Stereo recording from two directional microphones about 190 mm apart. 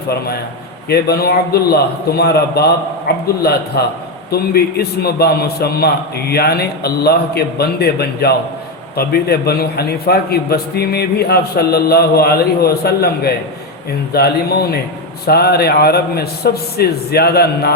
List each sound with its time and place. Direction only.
0.9 s a man's voice: 55° left (ahead or behind)